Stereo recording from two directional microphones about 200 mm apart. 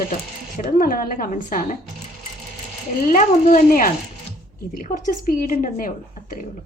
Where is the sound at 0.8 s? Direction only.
45° left (ahead or behind).